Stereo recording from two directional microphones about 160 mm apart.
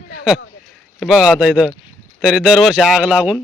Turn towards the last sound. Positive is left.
turn(degrees=-10)  # may be behind; listen again after turning